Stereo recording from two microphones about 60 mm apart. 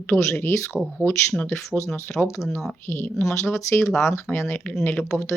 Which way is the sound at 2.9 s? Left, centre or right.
Left.